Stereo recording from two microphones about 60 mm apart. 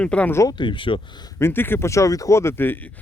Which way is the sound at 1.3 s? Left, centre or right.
Left.